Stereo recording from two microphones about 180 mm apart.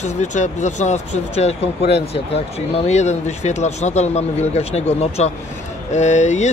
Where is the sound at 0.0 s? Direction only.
40° left (ahead or behind).